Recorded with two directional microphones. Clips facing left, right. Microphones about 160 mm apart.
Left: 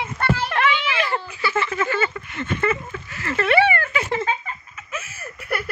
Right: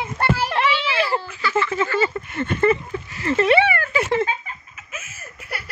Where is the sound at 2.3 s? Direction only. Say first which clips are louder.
Right 5 dB; 40° right (ahead or behind).